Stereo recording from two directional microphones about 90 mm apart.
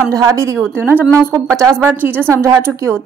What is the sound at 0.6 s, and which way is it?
Speech, 20° right (ahead or behind).